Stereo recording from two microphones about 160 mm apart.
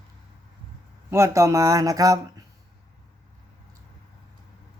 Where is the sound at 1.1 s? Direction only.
15° right (ahead or behind).